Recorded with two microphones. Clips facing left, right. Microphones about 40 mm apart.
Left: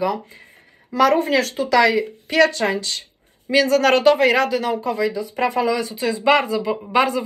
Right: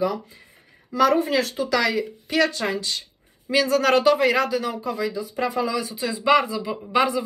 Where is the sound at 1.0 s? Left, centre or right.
Left.